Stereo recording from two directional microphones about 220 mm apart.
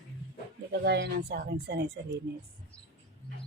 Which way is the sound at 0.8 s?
45° right (ahead or behind).